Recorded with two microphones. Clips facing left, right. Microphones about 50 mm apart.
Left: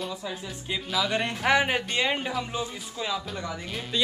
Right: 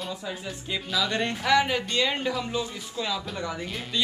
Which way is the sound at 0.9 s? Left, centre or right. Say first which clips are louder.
Even; centre.